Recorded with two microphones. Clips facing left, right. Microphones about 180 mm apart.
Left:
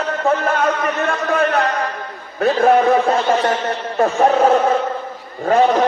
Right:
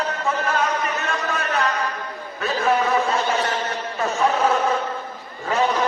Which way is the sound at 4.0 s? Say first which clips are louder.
Left 7 dB; 50° left (ahead or behind).